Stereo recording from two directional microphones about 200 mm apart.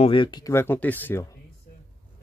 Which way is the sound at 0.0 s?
25° left (ahead or behind).